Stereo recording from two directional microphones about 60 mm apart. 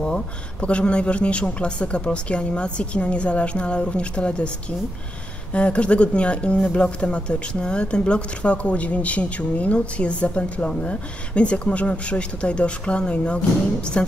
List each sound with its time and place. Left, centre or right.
0.0 s speech: centre
5.5 s speech: centre